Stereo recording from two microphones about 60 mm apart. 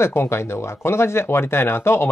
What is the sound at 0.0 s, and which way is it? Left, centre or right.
Speech, left.